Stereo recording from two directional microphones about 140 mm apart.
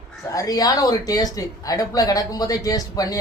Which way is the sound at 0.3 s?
25° left (ahead or behind).